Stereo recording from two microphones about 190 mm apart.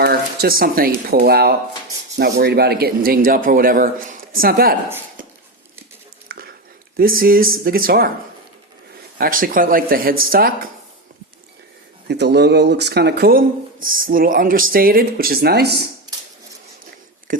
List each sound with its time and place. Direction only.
0.0 s speech: 55° right (ahead or behind)
6.2 s a sound: 50° right (ahead or behind)
6.9 s speech: 50° right (ahead or behind)
9.1 s speech: 50° right (ahead or behind)
12.0 s speech: 60° right (ahead or behind)